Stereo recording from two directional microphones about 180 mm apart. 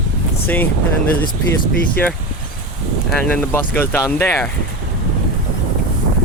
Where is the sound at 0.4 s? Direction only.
10° left (ahead or behind).